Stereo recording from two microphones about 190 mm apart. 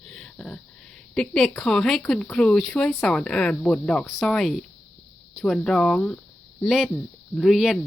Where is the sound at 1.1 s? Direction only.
5° left (ahead or behind).